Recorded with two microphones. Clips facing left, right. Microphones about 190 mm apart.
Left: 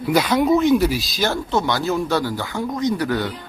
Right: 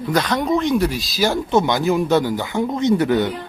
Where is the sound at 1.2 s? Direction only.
15° right (ahead or behind).